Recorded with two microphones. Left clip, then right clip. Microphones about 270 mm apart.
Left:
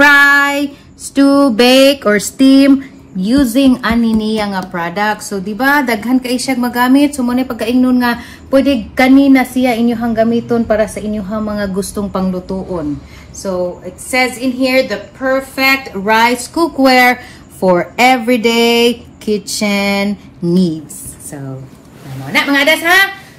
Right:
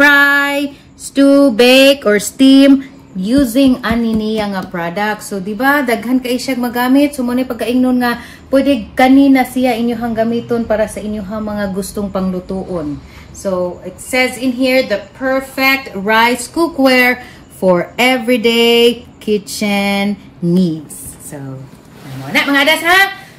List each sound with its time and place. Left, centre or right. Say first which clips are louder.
0.0 s child singing: left 2 dB; centre
1.1 s a woman's voice: right 1 dB; centre
22.3 s a woman's voice: even; centre